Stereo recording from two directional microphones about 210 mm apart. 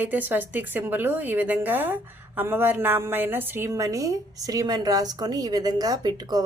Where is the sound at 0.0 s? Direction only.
10° right (ahead or behind).